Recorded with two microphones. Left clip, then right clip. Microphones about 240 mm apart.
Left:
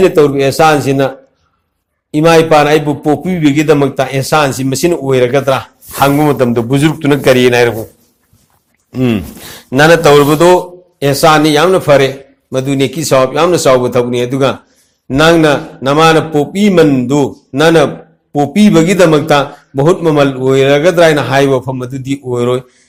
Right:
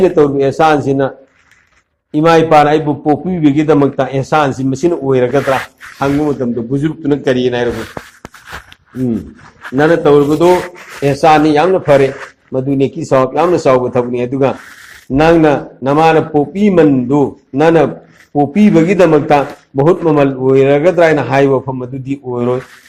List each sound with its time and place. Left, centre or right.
0.0 s a man's voice: left
2.1 s a man's voice: left
9.7 s a man's voice: left